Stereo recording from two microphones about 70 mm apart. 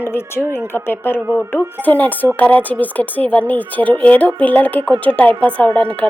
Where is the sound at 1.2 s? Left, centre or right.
Right.